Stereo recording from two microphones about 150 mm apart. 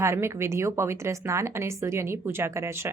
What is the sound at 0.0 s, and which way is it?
A woman's voice, 20° right (ahead or behind).